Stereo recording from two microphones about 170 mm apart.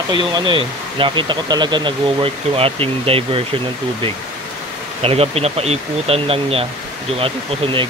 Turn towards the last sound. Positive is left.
turn(degrees=-35)  # may be behind; listen again after turning